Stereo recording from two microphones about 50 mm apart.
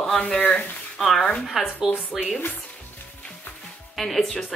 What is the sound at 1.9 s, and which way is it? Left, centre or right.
Speech, centre.